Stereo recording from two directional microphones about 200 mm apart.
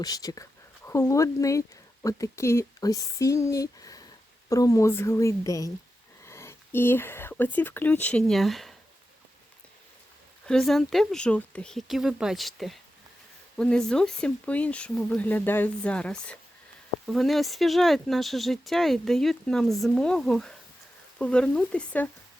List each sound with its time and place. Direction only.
0.0 s speech: 20° left (ahead or behind); by 8.7 s centre (ahead or behind)
10.4 s speech: centre (ahead or behind)